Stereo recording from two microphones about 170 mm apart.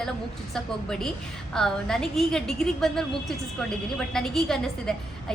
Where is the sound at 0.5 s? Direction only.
5° left (ahead or behind).